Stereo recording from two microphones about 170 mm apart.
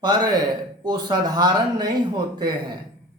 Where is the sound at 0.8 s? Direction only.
25° right (ahead or behind).